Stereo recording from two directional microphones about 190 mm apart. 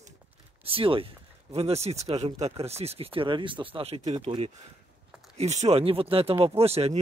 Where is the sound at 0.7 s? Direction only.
30° right (ahead or behind).